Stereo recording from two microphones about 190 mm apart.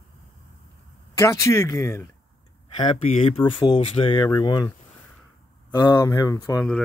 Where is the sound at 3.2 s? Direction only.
30° left (ahead or behind).